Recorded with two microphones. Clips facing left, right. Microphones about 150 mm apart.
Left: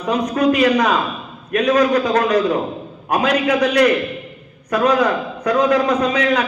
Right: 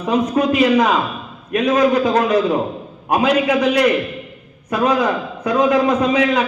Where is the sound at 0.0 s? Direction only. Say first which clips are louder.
Even; 25° right (ahead or behind).